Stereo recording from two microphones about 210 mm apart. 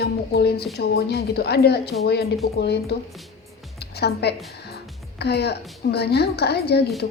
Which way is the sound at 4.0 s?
50° left (ahead or behind).